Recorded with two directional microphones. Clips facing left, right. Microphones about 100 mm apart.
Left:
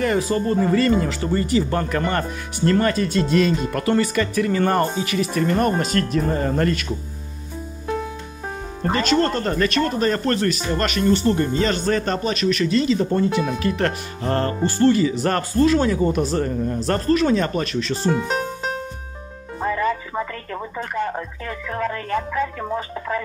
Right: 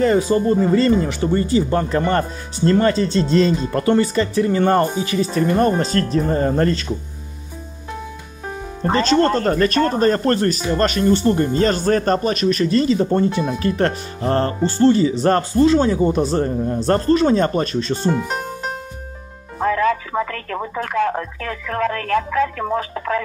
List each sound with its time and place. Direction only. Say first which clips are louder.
0.0 s speech: right 5 dB; 20° right (ahead or behind)
8.9 s speech: right 4 dB; 35° right (ahead or behind)
18.1 s music: even; 5° right (ahead or behind)
19.6 s speech: right 4 dB; 90° right